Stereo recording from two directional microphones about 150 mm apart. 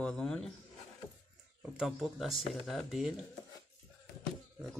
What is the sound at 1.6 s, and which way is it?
A man's voice, 5° right (ahead or behind).